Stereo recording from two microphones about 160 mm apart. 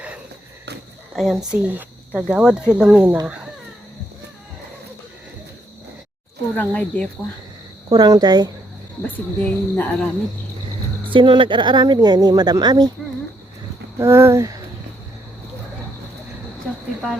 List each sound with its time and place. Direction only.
1.1 s speech: centre (ahead or behind)
6.6 s speech: 10° left (ahead or behind)
7.9 s speech: 25° right (ahead or behind)
9.0 s speech: 10° left (ahead or behind)
11.0 s speech: 30° right (ahead or behind)
14.0 s speech: 15° right (ahead or behind)